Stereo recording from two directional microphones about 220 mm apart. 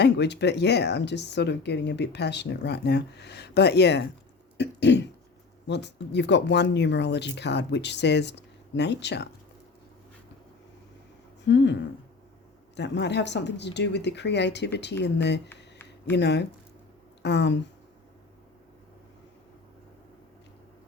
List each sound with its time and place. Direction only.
0.0 s speech: 50° left (ahead or behind)
4.5 s throat clearing: 50° left (ahead or behind)
5.6 s speech: 50° left (ahead or behind)
11.4 s speech: 50° left (ahead or behind)
15.4 s a sound: 10° left (ahead or behind)
16.1 s speech: 50° left (ahead or behind)